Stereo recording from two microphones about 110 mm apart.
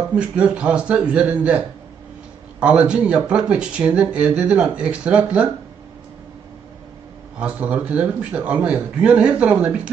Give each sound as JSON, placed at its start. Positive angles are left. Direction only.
{"t": 0.1, "sound": "speech", "side_deg": -10}
{"t": 7.3, "sound": "speech", "side_deg": -10}